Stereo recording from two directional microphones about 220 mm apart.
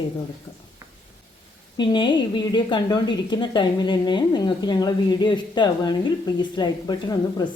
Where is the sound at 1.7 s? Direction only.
20° left (ahead or behind).